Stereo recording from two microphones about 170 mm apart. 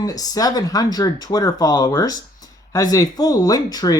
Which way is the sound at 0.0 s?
20° left (ahead or behind).